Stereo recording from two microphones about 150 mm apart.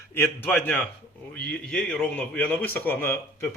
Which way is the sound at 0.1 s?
10° left (ahead or behind).